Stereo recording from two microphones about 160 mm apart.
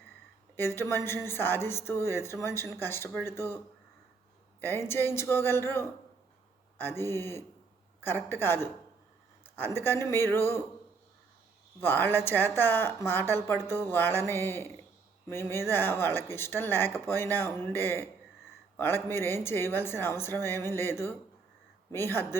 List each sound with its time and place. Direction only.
0.5 s a woman's voice: 15° left (ahead or behind)
4.6 s a woman's voice: 15° left (ahead or behind)
11.8 s a woman's voice: 15° left (ahead or behind)